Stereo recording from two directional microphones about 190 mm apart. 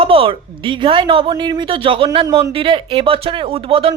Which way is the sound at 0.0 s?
30° right (ahead or behind).